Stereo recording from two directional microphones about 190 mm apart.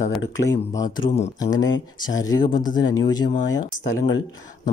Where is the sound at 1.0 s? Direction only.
30° left (ahead or behind).